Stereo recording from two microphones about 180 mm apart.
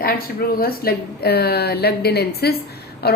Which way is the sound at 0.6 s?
55° left (ahead or behind).